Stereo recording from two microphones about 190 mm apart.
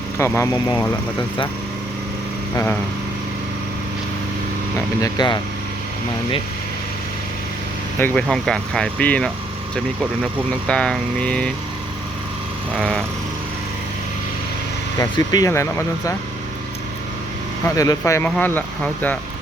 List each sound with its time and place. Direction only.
0.2 s speech: 15° left (ahead or behind)
5.0 s speech: 20° left (ahead or behind)
7.9 s speech: 10° left (ahead or behind)
10.7 s speech: 5° left (ahead or behind)
14.9 s speech: 20° left (ahead or behind)
17.7 s speech: 15° left (ahead or behind)